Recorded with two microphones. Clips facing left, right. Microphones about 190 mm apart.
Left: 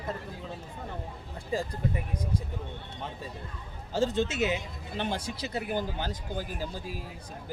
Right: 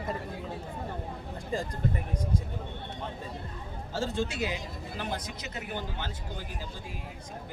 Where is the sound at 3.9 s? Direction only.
20° left (ahead or behind); by 6.1 s 40° left (ahead or behind).